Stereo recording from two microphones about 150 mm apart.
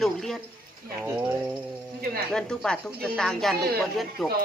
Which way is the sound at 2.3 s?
5° left (ahead or behind).